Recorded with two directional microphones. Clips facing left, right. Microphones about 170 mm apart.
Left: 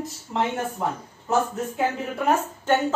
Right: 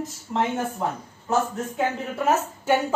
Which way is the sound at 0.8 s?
Centre (ahead or behind).